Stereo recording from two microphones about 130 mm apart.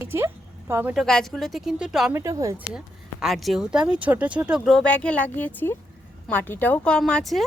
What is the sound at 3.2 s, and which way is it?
Speech, centre (ahead or behind).